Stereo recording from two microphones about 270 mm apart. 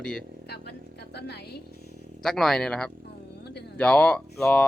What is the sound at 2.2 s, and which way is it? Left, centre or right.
Speech, centre.